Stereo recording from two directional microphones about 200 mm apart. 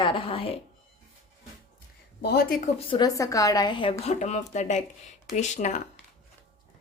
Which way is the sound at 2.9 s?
20° left (ahead or behind).